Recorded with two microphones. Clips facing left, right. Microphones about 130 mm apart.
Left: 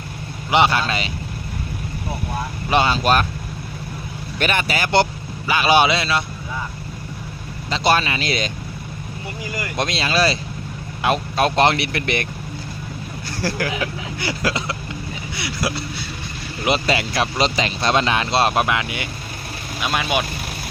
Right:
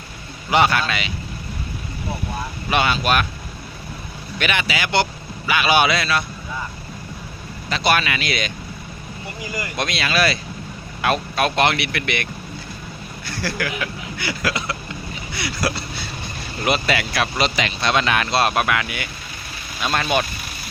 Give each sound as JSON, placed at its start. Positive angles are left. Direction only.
{"t": 0.5, "sound": "speech", "side_deg": 25}
{"t": 2.6, "sound": "speech", "side_deg": 30}
{"t": 4.4, "sound": "speech", "side_deg": 45}
{"t": 7.7, "sound": "speech", "side_deg": 30}
{"t": 9.7, "sound": "speech", "side_deg": 30}
{"t": 15.4, "sound": "speech", "side_deg": 15}
{"t": 16.6, "sound": "speech", "side_deg": 30}
{"t": 19.8, "sound": "speech", "side_deg": 10}